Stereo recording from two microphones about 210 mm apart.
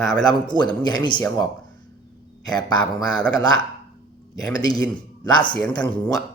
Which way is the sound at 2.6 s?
20° left (ahead or behind).